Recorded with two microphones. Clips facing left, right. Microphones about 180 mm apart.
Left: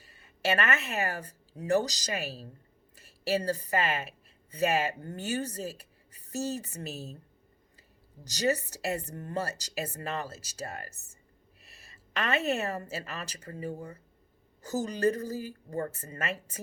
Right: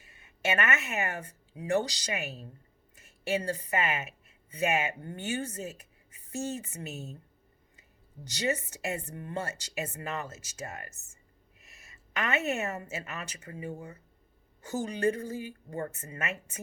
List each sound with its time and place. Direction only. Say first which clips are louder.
0.0 s a woman's voice: left 2 dB; 35° left (ahead or behind)